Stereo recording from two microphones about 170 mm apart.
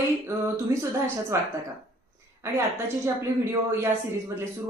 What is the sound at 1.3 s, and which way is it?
Speech, 15° right (ahead or behind).